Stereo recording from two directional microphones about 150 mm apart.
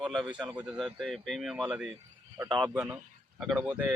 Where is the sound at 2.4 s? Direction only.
30° right (ahead or behind).